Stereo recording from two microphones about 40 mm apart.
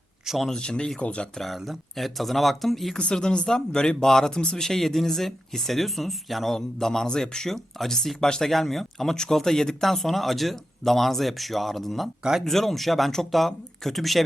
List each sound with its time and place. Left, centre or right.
0.4 s speech: centre
1.7 s speech: centre
3.2 s speech: centre
4.0 s speech: centre
4.3 s speech: left
4.6 s speech: centre
6.5 s speech: centre